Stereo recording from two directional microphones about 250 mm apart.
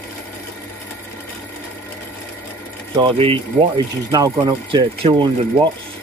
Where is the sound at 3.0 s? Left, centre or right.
Right.